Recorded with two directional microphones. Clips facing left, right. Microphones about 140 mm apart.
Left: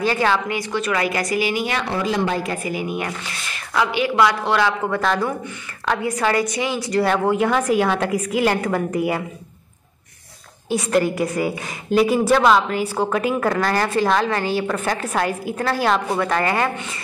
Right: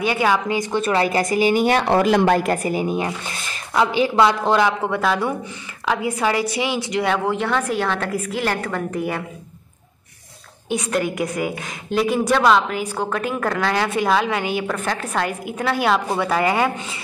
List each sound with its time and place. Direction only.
0.0 s a woman's voice: 15° right (ahead or behind)
0.5 s speech: 25° right (ahead or behind)
1.3 s a woman's voice: 40° right (ahead or behind); by 2.5 s 60° right (ahead or behind)
2.5 s a woman's voice: 35° right (ahead or behind)
3.1 s a sound: 25° right (ahead or behind)
3.9 s speech: 30° right (ahead or behind)
4.8 s a woman's voice: 5° right (ahead or behind)
6.4 s speech: 25° right (ahead or behind)
7.0 s a woman's voice: centre (ahead or behind)
10.9 s a woman's voice: centre (ahead or behind)
14.2 s a woman's voice: 15° right (ahead or behind)
14.9 s a woman's voice: 5° left (ahead or behind)